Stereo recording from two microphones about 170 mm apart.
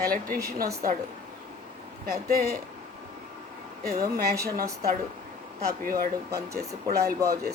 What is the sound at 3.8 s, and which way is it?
Speech, 60° right (ahead or behind).